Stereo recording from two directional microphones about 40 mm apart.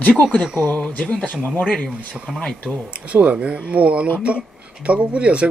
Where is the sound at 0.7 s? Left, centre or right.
Left.